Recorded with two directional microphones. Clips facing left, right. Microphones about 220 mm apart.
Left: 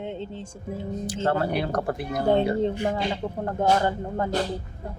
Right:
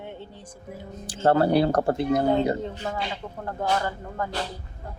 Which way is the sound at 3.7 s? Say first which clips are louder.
Left 4 dB; 30° left (ahead or behind).